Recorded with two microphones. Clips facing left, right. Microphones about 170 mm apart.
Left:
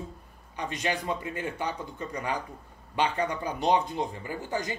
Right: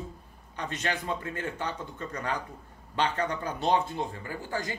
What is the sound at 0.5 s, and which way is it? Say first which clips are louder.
Speech: left 2 dB; 10° left (ahead or behind).